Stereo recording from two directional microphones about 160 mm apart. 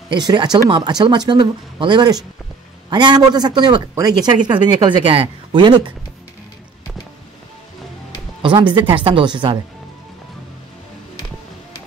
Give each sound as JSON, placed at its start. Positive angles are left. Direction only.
{"t": 0.1, "sound": "speech", "side_deg": -25}
{"t": 8.4, "sound": "speech", "side_deg": -30}